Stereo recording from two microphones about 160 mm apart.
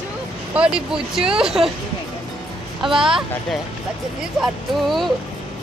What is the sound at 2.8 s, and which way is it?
Speech, 30° right (ahead or behind).